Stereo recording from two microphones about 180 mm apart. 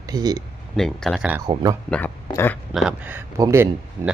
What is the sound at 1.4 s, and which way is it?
Speech, 20° right (ahead or behind).